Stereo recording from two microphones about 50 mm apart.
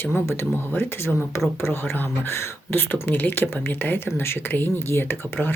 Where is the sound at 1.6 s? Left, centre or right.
Left.